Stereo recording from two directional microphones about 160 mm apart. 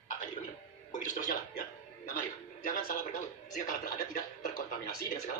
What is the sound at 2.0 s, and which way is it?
Television, 60° left (ahead or behind).